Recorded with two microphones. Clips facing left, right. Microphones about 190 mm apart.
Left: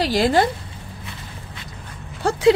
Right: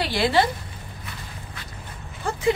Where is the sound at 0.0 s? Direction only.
45° left (ahead or behind).